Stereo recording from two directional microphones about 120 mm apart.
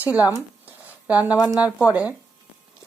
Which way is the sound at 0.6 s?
15° right (ahead or behind).